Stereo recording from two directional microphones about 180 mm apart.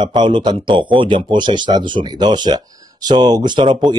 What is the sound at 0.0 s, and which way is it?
A man's voice, 25° right (ahead or behind).